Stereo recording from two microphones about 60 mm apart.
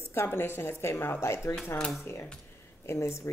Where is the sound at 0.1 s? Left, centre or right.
Left.